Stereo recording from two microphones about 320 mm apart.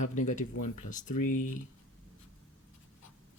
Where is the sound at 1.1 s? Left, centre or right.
Left.